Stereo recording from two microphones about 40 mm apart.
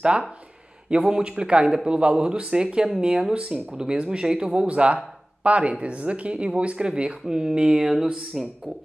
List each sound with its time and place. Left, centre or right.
1.0 s speech: right; by 8.5 s centre